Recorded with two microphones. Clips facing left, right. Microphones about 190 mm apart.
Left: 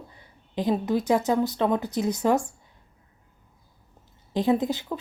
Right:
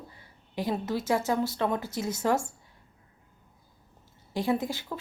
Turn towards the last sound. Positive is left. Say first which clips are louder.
# left 5 dB
turn(degrees=20)  # may be behind; listen again after turning